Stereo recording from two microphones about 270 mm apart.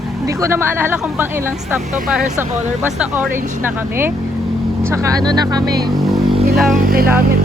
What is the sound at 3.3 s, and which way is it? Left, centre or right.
Speech, right.